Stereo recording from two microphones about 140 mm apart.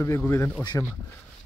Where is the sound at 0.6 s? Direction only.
30° left (ahead or behind).